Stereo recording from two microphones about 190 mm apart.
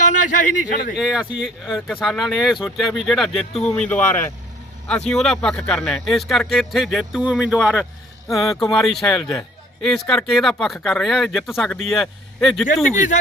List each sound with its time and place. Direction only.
0.2 s speech: 40° left (ahead or behind)
0.9 s speech: centre (ahead or behind)
12.9 s speech: 40° left (ahead or behind)